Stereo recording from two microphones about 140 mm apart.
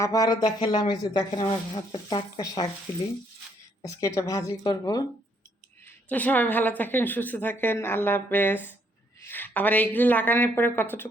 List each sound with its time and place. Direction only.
0.0 s speech: 25° left (ahead or behind)
3.8 s speech: 20° left (ahead or behind)
6.1 s a woman's voice: 10° left (ahead or behind)